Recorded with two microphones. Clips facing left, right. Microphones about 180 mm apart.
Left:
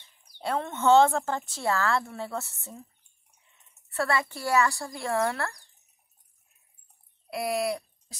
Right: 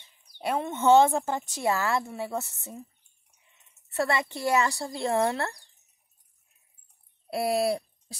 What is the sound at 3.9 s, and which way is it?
Speech, 20° right (ahead or behind).